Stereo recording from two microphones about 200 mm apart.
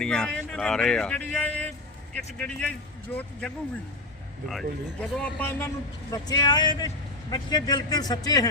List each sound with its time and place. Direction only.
0.0 s a man's voice: 5° left (ahead or behind)
4.4 s a man's voice: centre (ahead or behind); by 8.4 s 20° left (ahead or behind)